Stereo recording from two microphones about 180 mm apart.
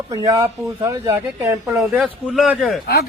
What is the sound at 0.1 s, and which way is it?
Speech, 20° right (ahead or behind).